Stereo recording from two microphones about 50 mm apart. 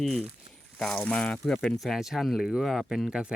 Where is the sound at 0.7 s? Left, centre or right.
Centre.